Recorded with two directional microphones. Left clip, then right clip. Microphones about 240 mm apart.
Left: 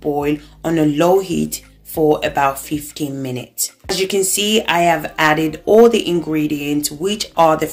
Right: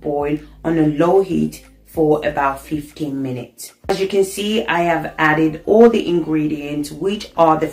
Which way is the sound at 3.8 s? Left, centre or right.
Left.